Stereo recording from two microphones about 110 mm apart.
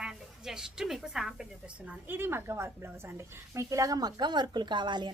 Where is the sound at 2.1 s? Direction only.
20° right (ahead or behind).